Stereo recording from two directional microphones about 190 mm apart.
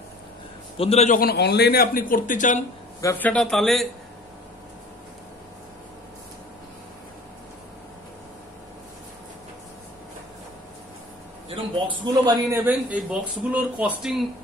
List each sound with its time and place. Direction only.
0.7 s a man's voice: 35° left (ahead or behind)
1.2 s speech: 60° left (ahead or behind); by 2.6 s 40° left (ahead or behind)
3.0 s a man's voice: 10° left (ahead or behind)
11.4 s a man's voice: 25° right (ahead or behind)
12.6 s speech: 10° right (ahead or behind)